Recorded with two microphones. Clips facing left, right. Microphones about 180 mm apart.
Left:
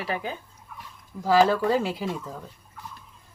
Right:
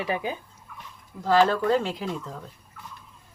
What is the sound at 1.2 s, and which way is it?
Speech, 10° left (ahead or behind).